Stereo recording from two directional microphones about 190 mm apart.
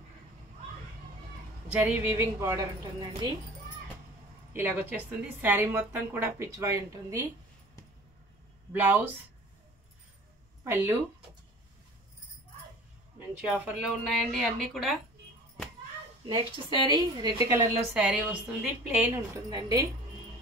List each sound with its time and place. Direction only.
1.7 s a woman's voice: 5° right (ahead or behind)
4.6 s a woman's voice: 10° right (ahead or behind)
8.7 s a woman's voice: 10° right (ahead or behind)
10.6 s speech: 15° right (ahead or behind)
13.5 s speech: 5° right (ahead or behind)
16.3 s a woman's voice: 25° right (ahead or behind)
17.9 s speech: 5° right (ahead or behind)
19.5 s a woman's voice: 20° right (ahead or behind)